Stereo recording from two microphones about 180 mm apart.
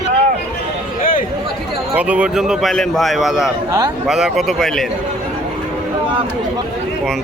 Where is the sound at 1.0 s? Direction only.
50° left (ahead or behind).